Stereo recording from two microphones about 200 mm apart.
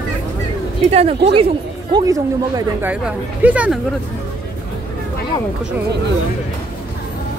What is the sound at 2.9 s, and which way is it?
Speech, 5° right (ahead or behind).